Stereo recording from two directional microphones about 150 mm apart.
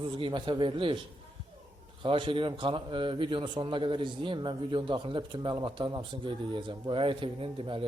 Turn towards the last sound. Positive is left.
turn(degrees=-35)  # may be behind; listen again after turning